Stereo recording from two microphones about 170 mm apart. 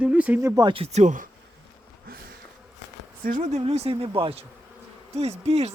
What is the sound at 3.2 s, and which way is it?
Speech, 45° right (ahead or behind).